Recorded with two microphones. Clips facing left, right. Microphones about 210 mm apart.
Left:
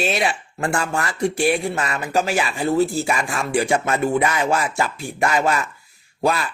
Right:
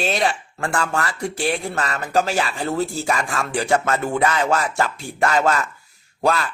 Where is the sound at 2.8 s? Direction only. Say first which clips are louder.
Left 6 dB; 45° left (ahead or behind).